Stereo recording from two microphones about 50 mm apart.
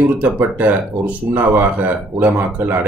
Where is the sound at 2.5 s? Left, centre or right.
Right.